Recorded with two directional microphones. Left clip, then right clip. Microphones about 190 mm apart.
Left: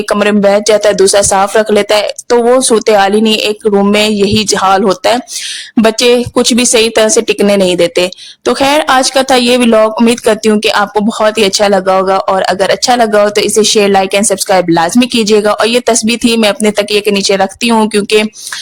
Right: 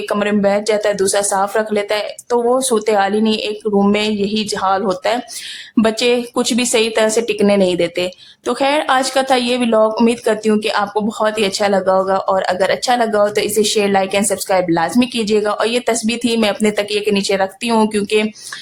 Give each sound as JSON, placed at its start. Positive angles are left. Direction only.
{"t": 0.1, "sound": "a woman's voice", "side_deg": 35}